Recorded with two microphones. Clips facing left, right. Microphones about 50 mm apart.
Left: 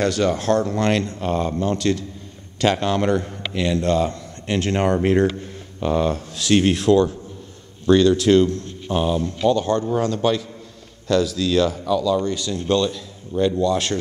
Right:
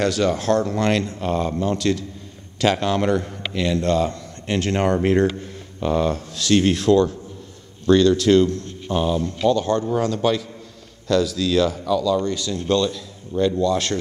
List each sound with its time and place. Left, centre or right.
0.0 s a man's voice: centre